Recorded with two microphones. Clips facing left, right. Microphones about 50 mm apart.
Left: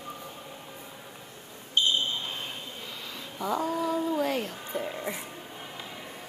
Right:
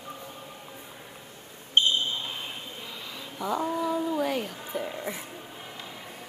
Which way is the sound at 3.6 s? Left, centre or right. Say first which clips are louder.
Right 1 dB; centre.